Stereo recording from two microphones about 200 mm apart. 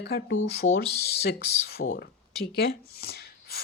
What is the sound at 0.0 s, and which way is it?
Speech, 50° left (ahead or behind).